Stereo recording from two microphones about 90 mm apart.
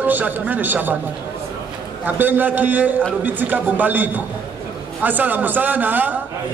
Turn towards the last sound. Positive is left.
turn(degrees=-20)  # may be behind; listen again after turning